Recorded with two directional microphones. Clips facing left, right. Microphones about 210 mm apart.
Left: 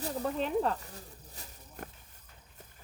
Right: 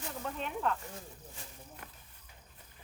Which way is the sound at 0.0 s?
35° left (ahead or behind).